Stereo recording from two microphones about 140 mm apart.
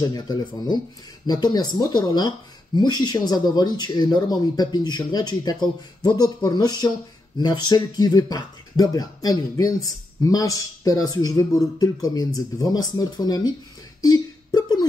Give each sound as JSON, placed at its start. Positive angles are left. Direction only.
{"t": 0.1, "sound": "speech", "side_deg": 30}